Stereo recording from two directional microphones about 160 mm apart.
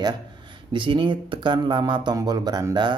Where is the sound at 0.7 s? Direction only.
30° right (ahead or behind).